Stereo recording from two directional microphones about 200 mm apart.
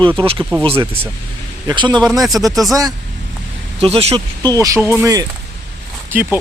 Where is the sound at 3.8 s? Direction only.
30° right (ahead or behind); by 6.4 s 10° right (ahead or behind).